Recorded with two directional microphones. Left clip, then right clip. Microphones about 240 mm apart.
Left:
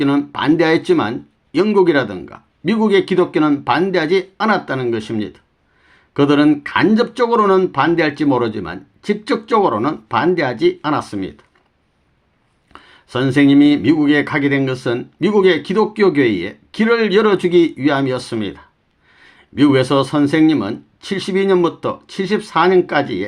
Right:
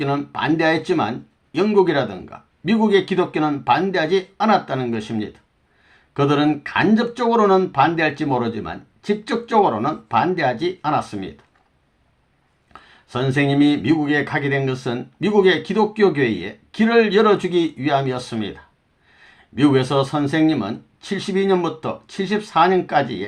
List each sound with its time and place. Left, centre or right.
0.0 s speech: left
12.7 s speech: left